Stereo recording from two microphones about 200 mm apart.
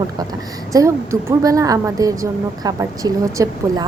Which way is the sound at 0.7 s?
15° right (ahead or behind).